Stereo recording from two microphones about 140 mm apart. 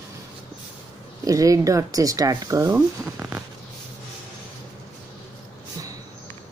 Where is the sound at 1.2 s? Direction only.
25° right (ahead or behind).